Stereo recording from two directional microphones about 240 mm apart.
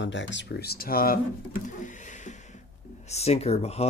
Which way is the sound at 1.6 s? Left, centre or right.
Left.